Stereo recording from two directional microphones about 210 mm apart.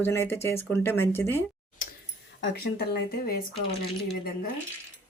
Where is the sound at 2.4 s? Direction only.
50° left (ahead or behind).